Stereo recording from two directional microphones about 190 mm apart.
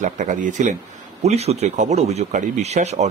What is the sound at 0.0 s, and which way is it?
Speech, 40° right (ahead or behind).